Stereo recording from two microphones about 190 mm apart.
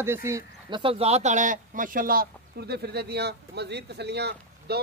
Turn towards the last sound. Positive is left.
turn(degrees=-60)  # may be behind; listen again after turning